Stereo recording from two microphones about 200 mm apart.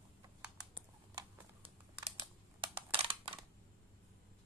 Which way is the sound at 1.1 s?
25° right (ahead or behind).